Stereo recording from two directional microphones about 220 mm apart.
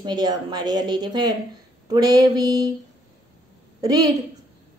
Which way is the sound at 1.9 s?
15° right (ahead or behind).